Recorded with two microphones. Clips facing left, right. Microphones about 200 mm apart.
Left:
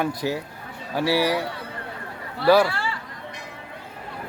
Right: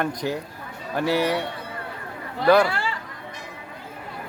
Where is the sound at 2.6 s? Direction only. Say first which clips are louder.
Right 1 dB; 15° right (ahead or behind).